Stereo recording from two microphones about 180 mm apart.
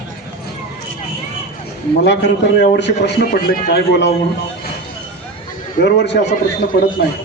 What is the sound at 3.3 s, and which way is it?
Speech, 50° left (ahead or behind).